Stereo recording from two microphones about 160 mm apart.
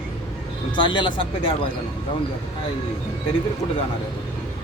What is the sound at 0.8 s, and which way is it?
Speech, 30° left (ahead or behind).